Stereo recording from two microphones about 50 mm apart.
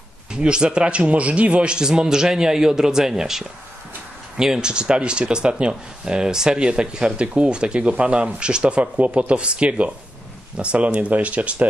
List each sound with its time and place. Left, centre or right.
0.3 s a man's voice: centre